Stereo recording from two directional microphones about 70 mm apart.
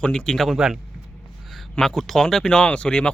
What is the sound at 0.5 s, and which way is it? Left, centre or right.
Speech, centre.